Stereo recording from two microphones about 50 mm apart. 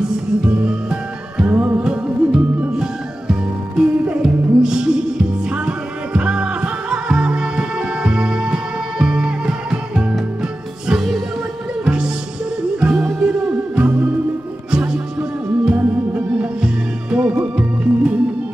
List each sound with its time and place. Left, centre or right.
0.0 s music: centre
1.4 s music: right
1.8 s music: centre
10.9 s music: centre
11.8 s music: centre
13.8 s music: right
14.7 s music: right